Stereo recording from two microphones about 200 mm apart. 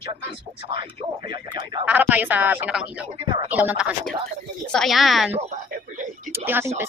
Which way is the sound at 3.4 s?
10° right (ahead or behind).